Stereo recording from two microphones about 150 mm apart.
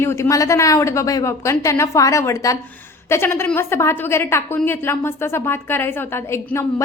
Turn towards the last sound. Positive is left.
turn(degrees=15)  # may be behind; listen again after turning